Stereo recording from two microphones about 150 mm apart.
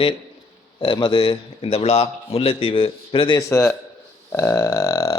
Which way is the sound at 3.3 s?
15° left (ahead or behind).